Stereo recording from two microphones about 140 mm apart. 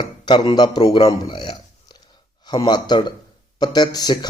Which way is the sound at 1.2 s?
30° left (ahead or behind).